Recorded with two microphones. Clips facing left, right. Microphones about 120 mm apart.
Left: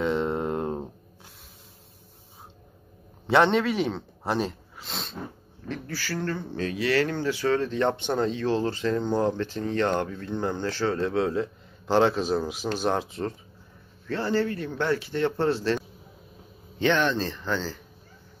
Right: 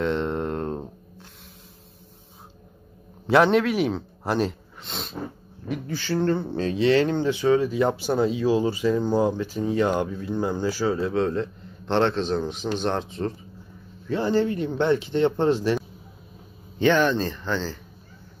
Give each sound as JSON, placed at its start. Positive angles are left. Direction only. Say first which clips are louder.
{"t": 0.0, "sound": "a sound", "louder": "right 1 dB", "side_deg": 0}
{"t": 3.3, "sound": "speech", "louder": "right 3 dB", "side_deg": 0}
{"t": 5.7, "sound": "speech", "louder": "right 5 dB", "side_deg": -20}
{"t": 14.0, "sound": "speech", "louder": "right 3 dB", "side_deg": -15}
{"t": 16.8, "sound": "speech", "louder": "right 4 dB", "side_deg": -5}